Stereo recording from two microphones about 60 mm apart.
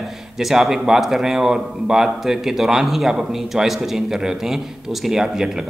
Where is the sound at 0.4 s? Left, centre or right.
Centre.